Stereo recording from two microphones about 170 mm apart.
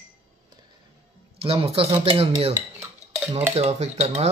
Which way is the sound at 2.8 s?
10° right (ahead or behind).